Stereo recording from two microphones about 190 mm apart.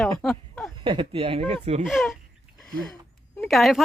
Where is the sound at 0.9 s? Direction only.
25° right (ahead or behind).